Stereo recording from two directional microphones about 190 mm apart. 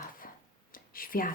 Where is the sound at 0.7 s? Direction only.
50° left (ahead or behind).